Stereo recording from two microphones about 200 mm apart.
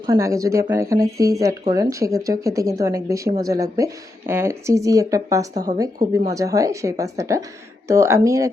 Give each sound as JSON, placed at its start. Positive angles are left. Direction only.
{"t": 0.0, "sound": "speech", "side_deg": -15}